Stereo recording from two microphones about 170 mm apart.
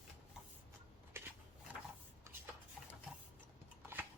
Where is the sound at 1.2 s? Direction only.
15° right (ahead or behind).